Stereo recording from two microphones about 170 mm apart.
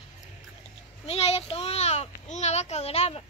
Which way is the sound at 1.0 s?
35° left (ahead or behind).